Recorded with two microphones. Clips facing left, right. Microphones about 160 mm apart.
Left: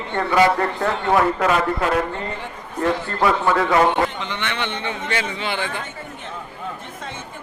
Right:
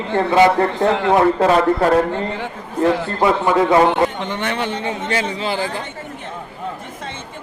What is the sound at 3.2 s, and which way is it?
Speech, 20° right (ahead or behind).